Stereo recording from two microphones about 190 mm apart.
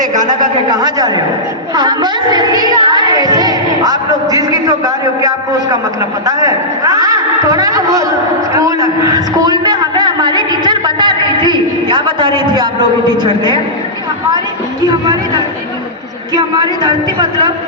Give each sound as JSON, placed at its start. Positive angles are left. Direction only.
{"t": 0.2, "sound": "child singing", "side_deg": -20}
{"t": 8.5, "sound": "a sound", "side_deg": -20}
{"t": 13.2, "sound": "child singing", "side_deg": -25}
{"t": 14.8, "sound": "child singing", "side_deg": -25}
{"t": 16.8, "sound": "child singing", "side_deg": -20}